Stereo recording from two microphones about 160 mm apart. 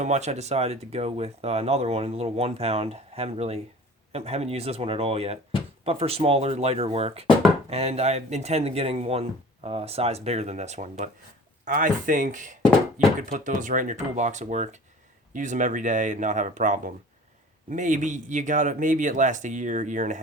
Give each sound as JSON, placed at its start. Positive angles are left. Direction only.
{"t": 0.0, "sound": "speech", "side_deg": -45}